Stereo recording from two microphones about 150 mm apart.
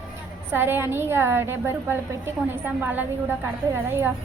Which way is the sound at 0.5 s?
15° right (ahead or behind).